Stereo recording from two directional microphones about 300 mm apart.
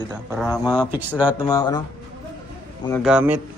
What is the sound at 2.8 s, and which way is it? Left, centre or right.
Speech, centre.